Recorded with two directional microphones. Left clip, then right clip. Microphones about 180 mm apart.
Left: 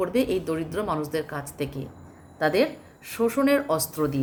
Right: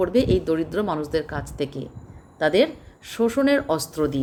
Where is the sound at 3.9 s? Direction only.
50° right (ahead or behind).